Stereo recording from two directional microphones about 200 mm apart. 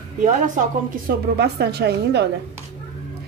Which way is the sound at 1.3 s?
55° right (ahead or behind).